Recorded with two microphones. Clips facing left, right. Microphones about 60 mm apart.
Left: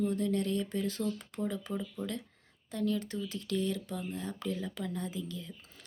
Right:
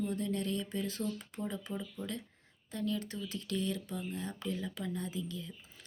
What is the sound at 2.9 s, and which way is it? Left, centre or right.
Speech, left.